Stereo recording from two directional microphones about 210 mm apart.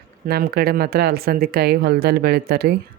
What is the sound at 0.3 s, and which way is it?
Speech, 45° right (ahead or behind).